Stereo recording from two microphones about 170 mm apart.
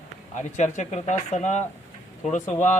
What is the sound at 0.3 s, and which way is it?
A man's voice, 45° left (ahead or behind).